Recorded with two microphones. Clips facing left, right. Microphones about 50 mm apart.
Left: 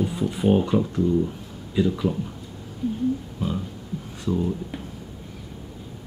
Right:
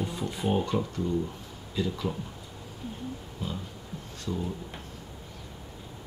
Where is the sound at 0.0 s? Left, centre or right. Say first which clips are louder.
Left 8 dB; centre.